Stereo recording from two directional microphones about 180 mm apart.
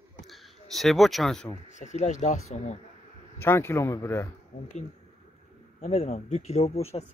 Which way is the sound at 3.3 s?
15° left (ahead or behind).